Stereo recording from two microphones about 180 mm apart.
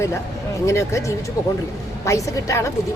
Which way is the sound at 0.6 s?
15° left (ahead or behind).